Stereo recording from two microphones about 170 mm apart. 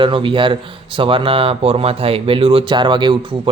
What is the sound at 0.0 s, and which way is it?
Speech, 30° right (ahead or behind).